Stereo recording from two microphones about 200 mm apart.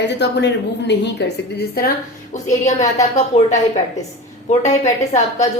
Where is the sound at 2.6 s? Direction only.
35° left (ahead or behind).